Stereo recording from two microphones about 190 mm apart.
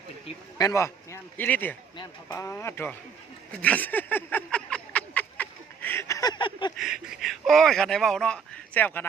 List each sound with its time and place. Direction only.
0.6 s a man's voice: 15° left (ahead or behind)
3.5 s a sound: 5° left (ahead or behind); by 6.7 s 25° left (ahead or behind)
6.7 s speech: centre (ahead or behind)